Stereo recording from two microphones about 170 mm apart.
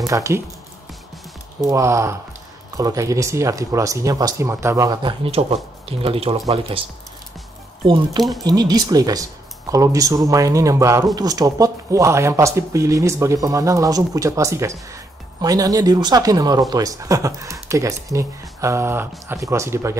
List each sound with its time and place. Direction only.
0.0 s speech: 15° right (ahead or behind)
1.7 s speech: 15° right (ahead or behind)
5.2 s speech: 35° right (ahead or behind)
8.2 s speech: centre (ahead or behind)
8.5 s speech: 25° right (ahead or behind)